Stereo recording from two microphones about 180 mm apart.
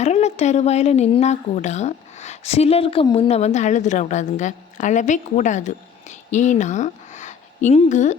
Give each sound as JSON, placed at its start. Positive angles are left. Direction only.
{"t": 0.0, "sound": "speech", "side_deg": 40}